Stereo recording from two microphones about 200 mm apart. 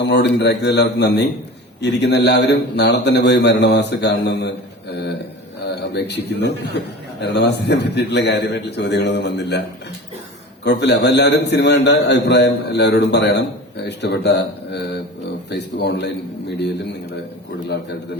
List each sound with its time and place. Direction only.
0.0 s a man's voice: 60° left (ahead or behind)
5.6 s a sound: 55° left (ahead or behind)
7.2 s a man's voice: 60° left (ahead or behind)
10.6 s a man's voice: 60° left (ahead or behind)